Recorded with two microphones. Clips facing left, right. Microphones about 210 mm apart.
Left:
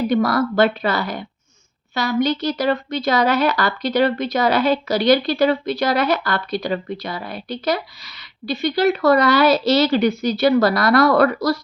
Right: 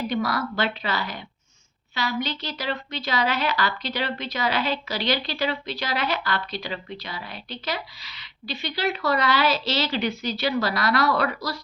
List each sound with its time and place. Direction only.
0.1 s a woman's voice: 45° left (ahead or behind)